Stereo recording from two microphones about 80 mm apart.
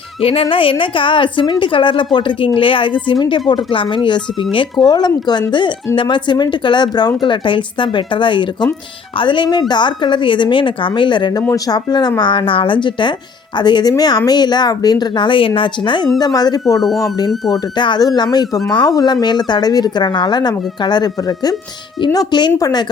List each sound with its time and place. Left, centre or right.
0.4 s a woman's voice: left
7.2 s a woman's voice: left
11.4 s speech: left
13.6 s speech: left
13.9 s speech: left
16.1 s speech: left
17.5 s speech: left
18.0 s speech: left
22.5 s speech: left